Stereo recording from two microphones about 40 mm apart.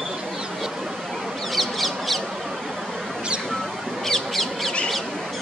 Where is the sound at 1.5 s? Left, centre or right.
Centre.